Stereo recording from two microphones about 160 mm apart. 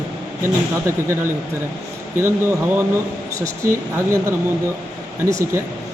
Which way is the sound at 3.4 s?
20° right (ahead or behind).